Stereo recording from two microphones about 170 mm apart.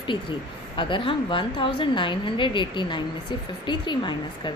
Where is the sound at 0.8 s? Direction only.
30° left (ahead or behind).